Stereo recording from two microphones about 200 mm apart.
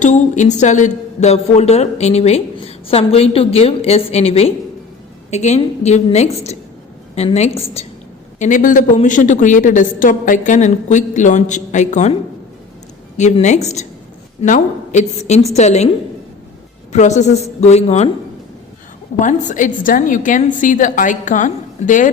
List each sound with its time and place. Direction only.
0.0 s a woman's voice: 35° left (ahead or behind)
13.1 s a woman's voice: 35° left (ahead or behind)
16.9 s a woman's voice: 35° left (ahead or behind)
19.2 s a woman's voice: 40° left (ahead or behind)